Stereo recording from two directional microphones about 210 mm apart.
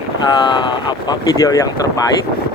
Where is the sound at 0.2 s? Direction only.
20° left (ahead or behind).